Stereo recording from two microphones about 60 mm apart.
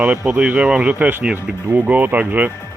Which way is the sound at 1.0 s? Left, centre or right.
Right.